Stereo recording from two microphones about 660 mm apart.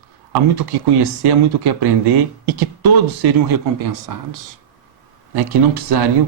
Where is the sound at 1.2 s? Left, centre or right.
Right.